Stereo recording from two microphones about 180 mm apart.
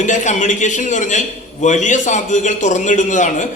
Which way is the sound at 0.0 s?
45° left (ahead or behind).